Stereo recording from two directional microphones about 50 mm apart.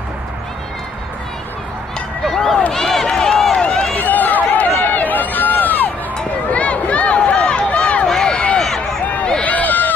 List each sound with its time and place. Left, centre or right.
2.2 s run: centre
3.9 s run: left
6.5 s run: left; by 9.0 s centre
9.4 s run: left